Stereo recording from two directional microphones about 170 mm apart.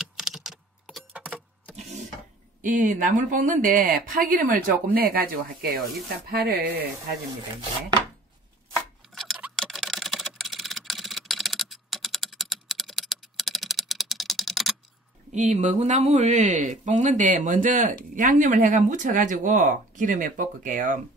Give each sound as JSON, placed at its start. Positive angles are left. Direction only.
{"t": 0.2, "sound": "typing", "side_deg": -5}
{"t": 2.6, "sound": "speech", "side_deg": -50}
{"t": 4.9, "sound": "speech", "side_deg": -65}
{"t": 9.1, "sound": "typing", "side_deg": 0}
{"t": 15.3, "sound": "speech", "side_deg": -45}